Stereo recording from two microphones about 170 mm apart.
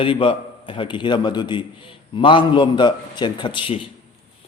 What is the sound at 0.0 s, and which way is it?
A man's voice, 30° left (ahead or behind).